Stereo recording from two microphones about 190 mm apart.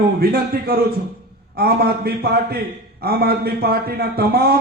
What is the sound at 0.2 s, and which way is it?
A man's voice, 55° right (ahead or behind).